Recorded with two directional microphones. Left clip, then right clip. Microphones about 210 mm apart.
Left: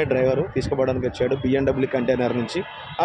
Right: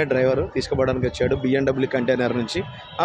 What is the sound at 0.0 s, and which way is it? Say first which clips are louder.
Speech: right 1 dB; 5° right (ahead or behind).